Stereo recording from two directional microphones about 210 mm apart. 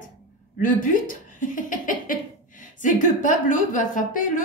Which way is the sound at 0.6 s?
40° left (ahead or behind).